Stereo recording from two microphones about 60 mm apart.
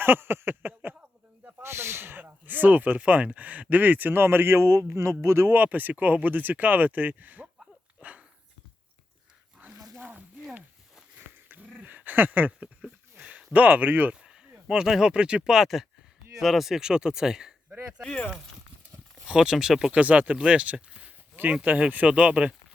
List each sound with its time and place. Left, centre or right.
0.0 s a sound: right
1.6 s speech: right
5.5 s speech: right
8.0 s dog: right
9.6 s dog: right
10.0 s a sound: right
11.4 s dog: right
11.8 s a sound: right
12.5 s a sound: centre
13.2 s speech: centre
14.7 s speech: centre
18.0 s speech: centre
19.2 s speech: centre
19.9 s speech: right